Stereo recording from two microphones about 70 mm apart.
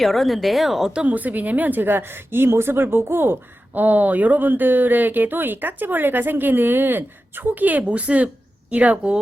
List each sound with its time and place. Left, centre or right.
0.0 s speech: centre
1.0 s a woman's voice: right